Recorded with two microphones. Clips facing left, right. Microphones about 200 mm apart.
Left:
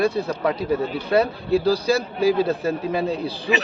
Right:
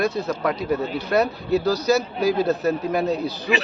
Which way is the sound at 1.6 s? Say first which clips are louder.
Right 1 dB; 30° left (ahead or behind).